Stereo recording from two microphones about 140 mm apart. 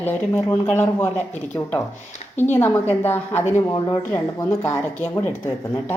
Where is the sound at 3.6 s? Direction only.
25° left (ahead or behind).